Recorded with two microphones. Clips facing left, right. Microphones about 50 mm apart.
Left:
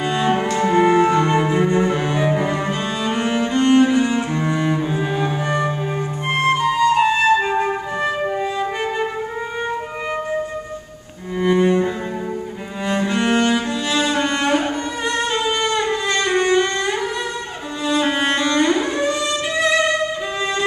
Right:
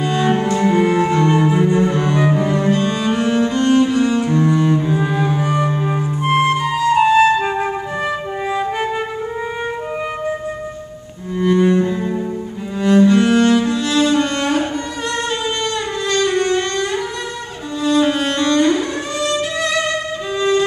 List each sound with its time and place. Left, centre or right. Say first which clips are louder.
0.0 s cello: right 2 dB; centre
0.6 s music: left 3 dB; centre
1.7 s cello: right 2 dB; centre
5.4 s flute: right 2 dB; centre
11.3 s cello: right 2 dB; centre
15.4 s music: left 2 dB; centre
17.8 s cello: right 3 dB; centre